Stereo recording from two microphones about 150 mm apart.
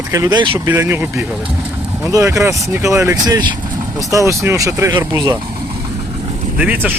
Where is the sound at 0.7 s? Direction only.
15° right (ahead or behind).